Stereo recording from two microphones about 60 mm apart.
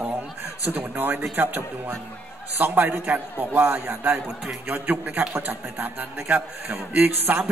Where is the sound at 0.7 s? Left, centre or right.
Right.